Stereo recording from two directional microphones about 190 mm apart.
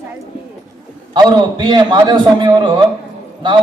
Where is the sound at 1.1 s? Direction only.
25° right (ahead or behind).